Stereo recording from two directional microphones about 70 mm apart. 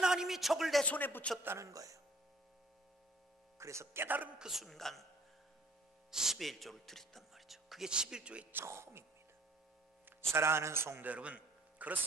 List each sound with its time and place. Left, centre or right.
0.0 s a sound: centre
0.8 s a man's voice: left
1.4 s a man's voice: right
1.7 s speech: right
3.5 s a man's voice: right
4.4 s a woman's voice: centre
6.1 s speech: centre
8.6 s a man's voice: right
10.3 s a man's voice: right
11.1 s music: centre